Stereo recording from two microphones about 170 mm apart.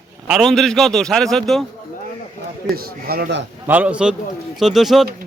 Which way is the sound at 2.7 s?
65° right (ahead or behind).